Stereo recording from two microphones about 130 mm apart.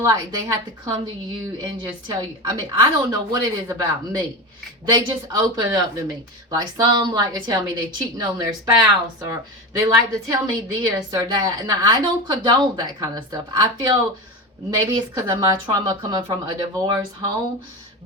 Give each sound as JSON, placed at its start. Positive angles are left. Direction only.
{"t": 0.0, "sound": "speech", "side_deg": -30}
{"t": 2.0, "sound": "speech", "side_deg": -30}